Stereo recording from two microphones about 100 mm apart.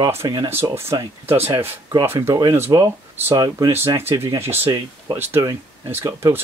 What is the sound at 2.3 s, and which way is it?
Speech, 35° right (ahead or behind).